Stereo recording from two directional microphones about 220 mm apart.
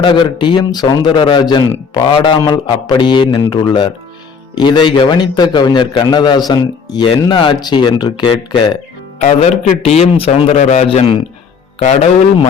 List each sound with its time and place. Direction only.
0.0 s a man's voice: 20° left (ahead or behind)